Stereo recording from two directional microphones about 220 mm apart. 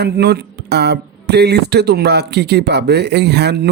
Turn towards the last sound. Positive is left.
turn(degrees=-50)  # may be behind; listen again after turning